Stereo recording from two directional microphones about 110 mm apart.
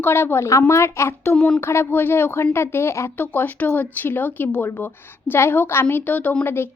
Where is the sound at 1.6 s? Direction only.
20° left (ahead or behind).